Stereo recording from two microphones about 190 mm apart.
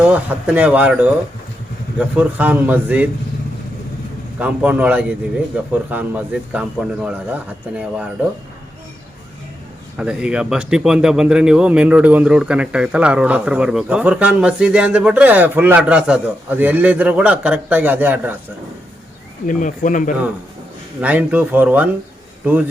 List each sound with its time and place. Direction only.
0.0 s a man's voice: 5° right (ahead or behind)
4.4 s a man's voice: 5° right (ahead or behind)
10.0 s speech: 5° right (ahead or behind)
19.5 s speech: 40° left (ahead or behind)
21.0 s a man's voice: 5° right (ahead or behind)